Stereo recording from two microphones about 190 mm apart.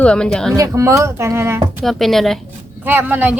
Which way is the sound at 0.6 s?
15° right (ahead or behind).